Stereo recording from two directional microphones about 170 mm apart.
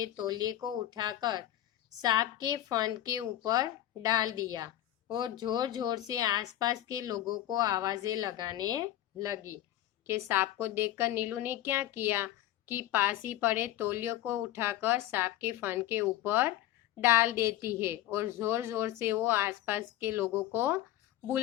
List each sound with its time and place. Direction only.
0.0 s a woman's voice: 25° right (ahead or behind)